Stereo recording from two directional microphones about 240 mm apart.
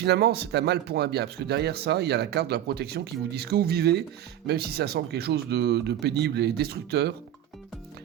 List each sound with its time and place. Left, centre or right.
0.0 s speech: right